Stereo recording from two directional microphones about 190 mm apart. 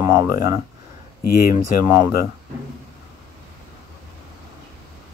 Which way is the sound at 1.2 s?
50° left (ahead or behind).